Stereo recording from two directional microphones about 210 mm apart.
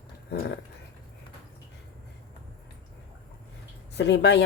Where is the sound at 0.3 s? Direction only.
50° left (ahead or behind).